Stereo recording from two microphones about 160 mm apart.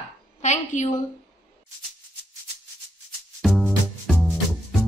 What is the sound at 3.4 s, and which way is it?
Music, centre (ahead or behind).